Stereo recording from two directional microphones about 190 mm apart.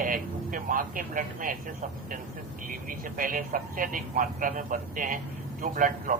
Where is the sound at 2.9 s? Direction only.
45° right (ahead or behind).